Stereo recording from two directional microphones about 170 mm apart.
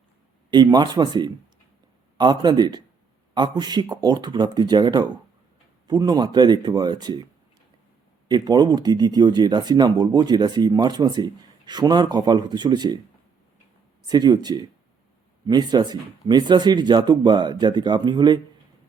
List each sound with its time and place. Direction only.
0.5 s speech: 25° right (ahead or behind)
8.3 s speech: 25° right (ahead or behind)
14.1 s speech: 25° right (ahead or behind)